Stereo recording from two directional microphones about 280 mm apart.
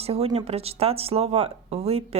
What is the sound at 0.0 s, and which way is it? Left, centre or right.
Speech, right.